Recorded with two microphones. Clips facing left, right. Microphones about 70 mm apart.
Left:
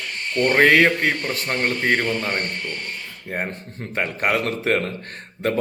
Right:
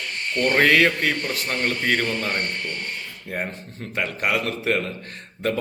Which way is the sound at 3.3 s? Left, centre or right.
Left.